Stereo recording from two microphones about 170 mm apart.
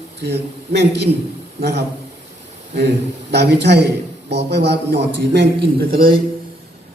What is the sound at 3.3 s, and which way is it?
A man's voice, 80° right.